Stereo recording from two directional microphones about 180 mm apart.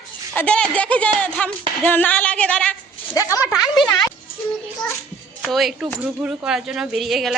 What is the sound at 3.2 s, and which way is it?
Speech, 20° left (ahead or behind).